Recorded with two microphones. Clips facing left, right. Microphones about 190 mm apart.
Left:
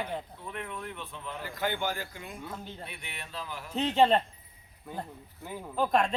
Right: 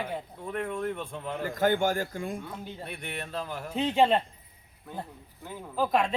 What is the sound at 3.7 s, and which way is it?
Speech, 10° right (ahead or behind).